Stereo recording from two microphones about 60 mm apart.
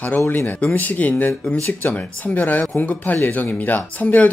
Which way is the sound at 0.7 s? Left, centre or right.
Left.